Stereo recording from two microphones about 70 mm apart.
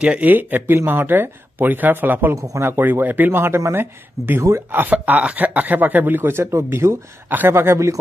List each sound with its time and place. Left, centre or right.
0.0 s speech: right
2.3 s speech: right
2.7 s speech: right